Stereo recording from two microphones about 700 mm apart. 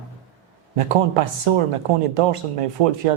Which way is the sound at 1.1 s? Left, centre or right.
Right.